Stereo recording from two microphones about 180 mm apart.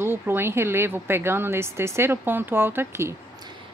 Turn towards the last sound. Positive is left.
turn(degrees=-15)  # may be behind; listen again after turning